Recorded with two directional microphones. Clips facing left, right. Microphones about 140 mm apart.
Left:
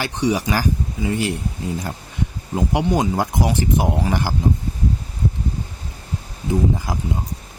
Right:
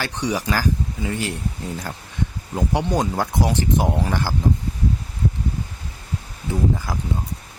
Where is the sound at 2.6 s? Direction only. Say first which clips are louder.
Left 2 dB; 5° left (ahead or behind).